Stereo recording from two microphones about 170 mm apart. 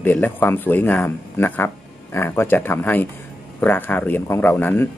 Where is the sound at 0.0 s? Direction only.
10° left (ahead or behind).